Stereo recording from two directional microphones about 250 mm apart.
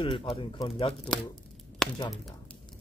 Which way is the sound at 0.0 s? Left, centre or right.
Left.